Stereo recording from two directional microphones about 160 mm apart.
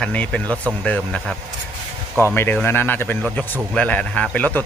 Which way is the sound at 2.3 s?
15° left (ahead or behind).